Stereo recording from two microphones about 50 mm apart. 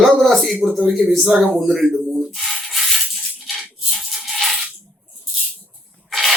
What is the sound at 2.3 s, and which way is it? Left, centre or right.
Maraca, centre.